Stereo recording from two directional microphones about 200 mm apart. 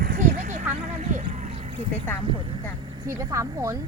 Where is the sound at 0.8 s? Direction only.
40° right (ahead or behind).